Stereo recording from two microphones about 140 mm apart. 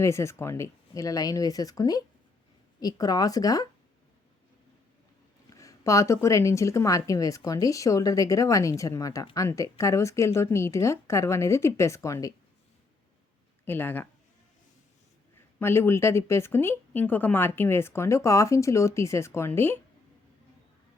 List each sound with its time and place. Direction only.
0.0 s speech: 20° left (ahead or behind)
5.5 s speech: 25° left (ahead or behind)
13.7 s a woman's voice: 15° left (ahead or behind)
15.5 s a woman's voice: 15° left (ahead or behind)